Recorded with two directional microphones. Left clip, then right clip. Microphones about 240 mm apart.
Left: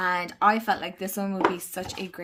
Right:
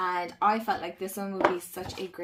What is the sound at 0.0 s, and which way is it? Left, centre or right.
Speech, left.